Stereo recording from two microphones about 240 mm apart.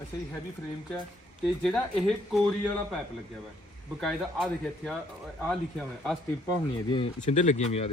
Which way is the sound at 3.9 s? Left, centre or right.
Centre.